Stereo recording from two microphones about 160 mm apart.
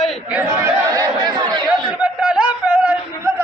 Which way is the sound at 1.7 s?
5° right (ahead or behind).